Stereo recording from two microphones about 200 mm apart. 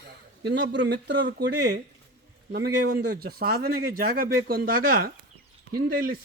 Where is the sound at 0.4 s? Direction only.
60° right (ahead or behind).